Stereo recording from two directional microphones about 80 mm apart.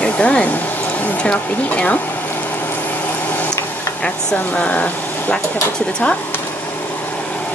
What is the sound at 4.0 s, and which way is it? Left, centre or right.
Speech, centre.